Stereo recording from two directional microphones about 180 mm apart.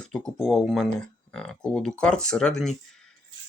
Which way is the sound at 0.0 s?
5° left (ahead or behind).